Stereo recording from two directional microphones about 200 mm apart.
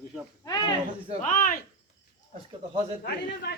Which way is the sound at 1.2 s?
40° left (ahead or behind).